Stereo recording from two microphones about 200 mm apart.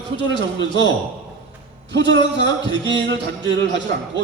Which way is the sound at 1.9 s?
65° right (ahead or behind).